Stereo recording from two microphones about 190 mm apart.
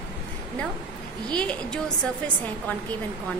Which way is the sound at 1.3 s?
5° left (ahead or behind).